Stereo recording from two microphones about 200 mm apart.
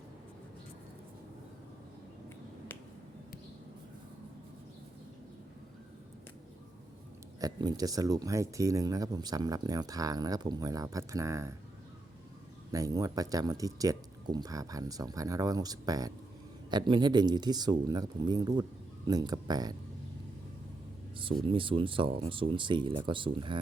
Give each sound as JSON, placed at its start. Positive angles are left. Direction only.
{"t": 7.3, "sound": "speech", "side_deg": -20}
{"t": 12.7, "sound": "speech", "side_deg": -20}
{"t": 21.2, "sound": "speech", "side_deg": -25}